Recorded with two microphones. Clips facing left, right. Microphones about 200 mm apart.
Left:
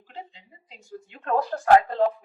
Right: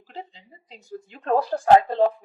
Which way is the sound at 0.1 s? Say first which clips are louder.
Right 2 dB; 35° right (ahead or behind).